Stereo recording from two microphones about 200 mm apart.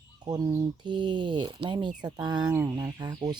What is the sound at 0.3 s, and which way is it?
Speech, 20° right (ahead or behind).